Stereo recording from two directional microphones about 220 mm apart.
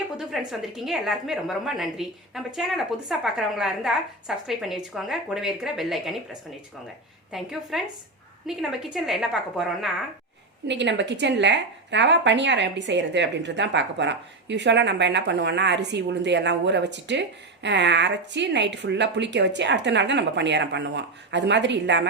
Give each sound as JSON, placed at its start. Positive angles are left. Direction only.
{"t": 0.3, "sound": "a woman's voice", "side_deg": 0}
{"t": 7.3, "sound": "a woman's voice", "side_deg": 0}
{"t": 10.7, "sound": "a woman's voice", "side_deg": -55}